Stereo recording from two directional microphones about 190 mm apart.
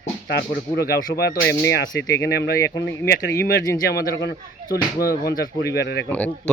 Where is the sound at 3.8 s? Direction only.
60° left (ahead or behind).